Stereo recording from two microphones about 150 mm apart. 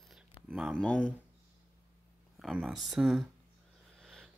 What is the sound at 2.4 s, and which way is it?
Speech, 5° right (ahead or behind).